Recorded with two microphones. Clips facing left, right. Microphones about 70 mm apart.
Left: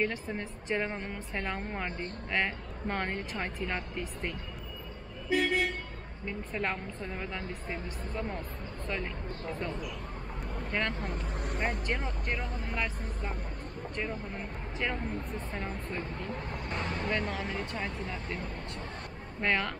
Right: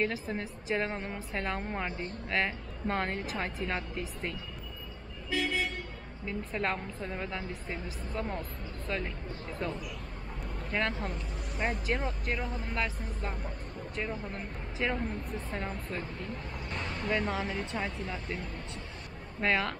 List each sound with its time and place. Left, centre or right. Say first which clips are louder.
0.0 s speech: even; centre
1.9 s speech: even; centre
5.3 s vehicle: left 4 dB; left
6.2 s speech: right 1 dB; centre
19.4 s speech: right 1 dB; centre